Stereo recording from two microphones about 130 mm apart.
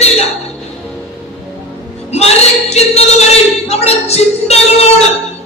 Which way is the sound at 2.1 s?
55° left (ahead or behind).